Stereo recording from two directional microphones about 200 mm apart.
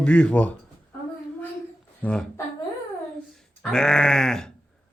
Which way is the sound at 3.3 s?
5° left (ahead or behind).